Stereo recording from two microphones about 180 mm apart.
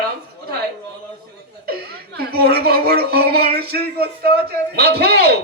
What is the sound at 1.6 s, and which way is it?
Speech, 60° right (ahead or behind).